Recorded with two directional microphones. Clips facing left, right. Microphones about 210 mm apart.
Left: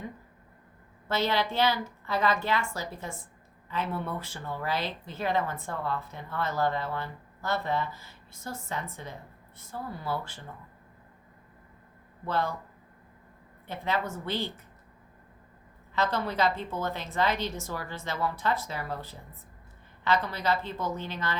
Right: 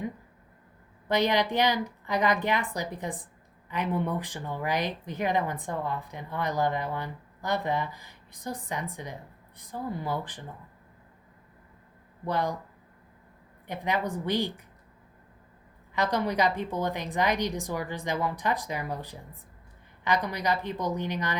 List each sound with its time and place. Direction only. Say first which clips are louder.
1.0 s speech: right 3 dB; 15° right (ahead or behind)
12.2 s speech: right 1 dB; 15° right (ahead or behind)
13.7 s speech: right 2 dB; 15° right (ahead or behind)
15.9 s speech: right 2 dB; 15° right (ahead or behind)